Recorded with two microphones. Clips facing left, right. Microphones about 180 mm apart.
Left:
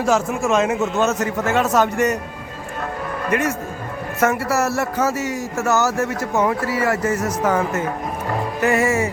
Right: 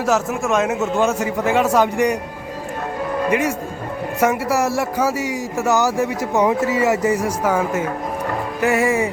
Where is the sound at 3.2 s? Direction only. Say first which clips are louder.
Even; 10° right (ahead or behind).